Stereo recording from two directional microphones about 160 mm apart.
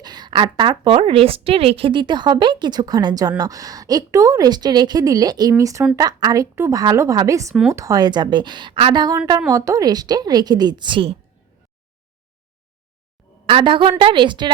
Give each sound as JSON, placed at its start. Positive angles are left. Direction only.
{"t": 0.0, "sound": "a woman's voice", "side_deg": -25}
{"t": 13.2, "sound": "a sound", "side_deg": 0}
{"t": 13.5, "sound": "a woman's voice", "side_deg": -35}